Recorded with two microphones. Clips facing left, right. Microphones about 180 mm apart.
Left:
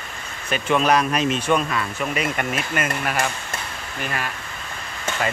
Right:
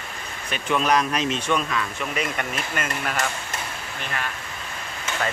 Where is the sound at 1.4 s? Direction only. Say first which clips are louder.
Left 3 dB; 45° left (ahead or behind).